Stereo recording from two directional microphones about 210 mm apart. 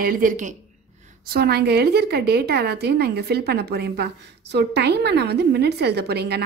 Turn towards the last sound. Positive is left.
turn(degrees=-50)  # may be behind; listen again after turning